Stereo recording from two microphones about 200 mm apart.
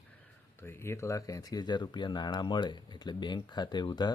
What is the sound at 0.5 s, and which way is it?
Speech, 10° left (ahead or behind).